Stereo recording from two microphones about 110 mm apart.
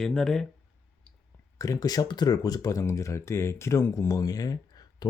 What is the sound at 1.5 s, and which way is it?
Speech, 35° left (ahead or behind).